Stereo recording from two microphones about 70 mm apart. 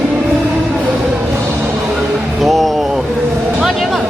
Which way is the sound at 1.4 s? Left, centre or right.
Right.